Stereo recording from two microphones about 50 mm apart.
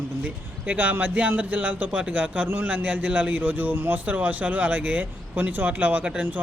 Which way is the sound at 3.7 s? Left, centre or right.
Right.